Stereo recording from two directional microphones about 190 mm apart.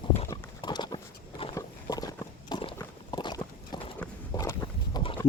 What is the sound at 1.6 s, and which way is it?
Walk, 20° left (ahead or behind).